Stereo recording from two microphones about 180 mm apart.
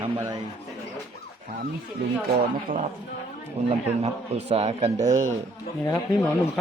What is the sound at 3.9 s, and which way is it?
A man's voice, 35° right (ahead or behind).